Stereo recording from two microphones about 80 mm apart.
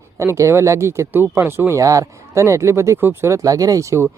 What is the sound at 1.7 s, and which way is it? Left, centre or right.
Speech, right.